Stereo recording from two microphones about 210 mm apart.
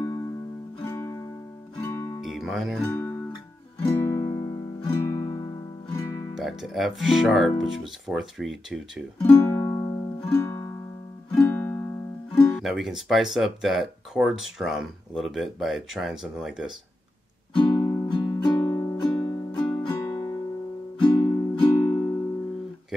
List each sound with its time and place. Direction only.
0.0 s music: 10° left (ahead or behind)
2.2 s music: centre (ahead or behind)
2.8 s speech: 10° left (ahead or behind)
3.8 s music: 15° left (ahead or behind)
6.3 s speech: centre (ahead or behind)
9.2 s music: 10° left (ahead or behind)
12.5 s speech: centre (ahead or behind)
17.6 s music: 25° left (ahead or behind)